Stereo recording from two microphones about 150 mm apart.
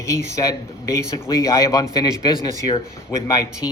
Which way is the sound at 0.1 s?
20° left (ahead or behind).